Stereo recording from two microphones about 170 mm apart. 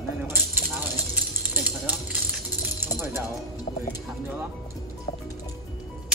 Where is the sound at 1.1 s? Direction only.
10° right (ahead or behind).